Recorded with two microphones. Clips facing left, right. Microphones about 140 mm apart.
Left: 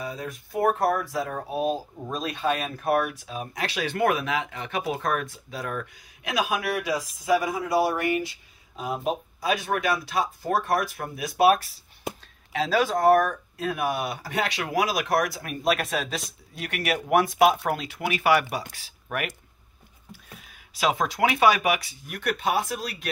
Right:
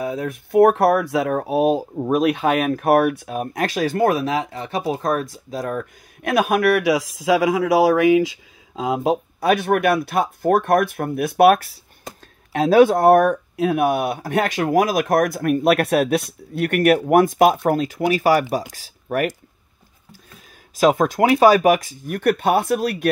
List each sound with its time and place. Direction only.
0.0 s speech: 55° right (ahead or behind); by 5.9 s 40° right (ahead or behind)
6.2 s speech: 55° right (ahead or behind); by 19.3 s 40° right (ahead or behind)
20.7 s speech: 45° right (ahead or behind)